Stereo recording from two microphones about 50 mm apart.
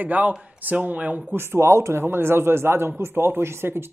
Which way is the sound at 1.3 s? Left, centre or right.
Right.